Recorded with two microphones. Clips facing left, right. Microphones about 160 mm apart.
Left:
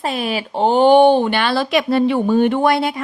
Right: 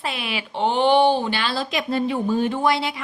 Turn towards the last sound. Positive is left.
turn(degrees=50)  # may be behind; listen again after turning